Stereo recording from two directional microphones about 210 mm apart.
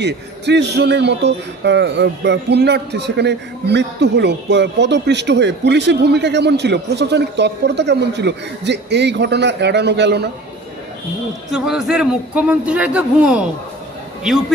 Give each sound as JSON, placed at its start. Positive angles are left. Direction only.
{"t": 0.0, "sound": "a man's voice", "side_deg": -55}
{"t": 11.5, "sound": "a man's voice", "side_deg": 0}